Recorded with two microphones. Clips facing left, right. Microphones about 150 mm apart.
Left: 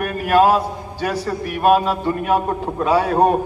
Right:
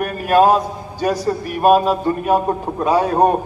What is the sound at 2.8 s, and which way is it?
Speech, 15° right (ahead or behind).